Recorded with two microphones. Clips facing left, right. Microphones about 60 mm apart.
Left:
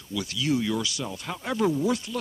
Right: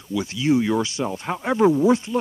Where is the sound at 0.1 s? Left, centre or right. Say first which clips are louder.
Right 6 dB; right.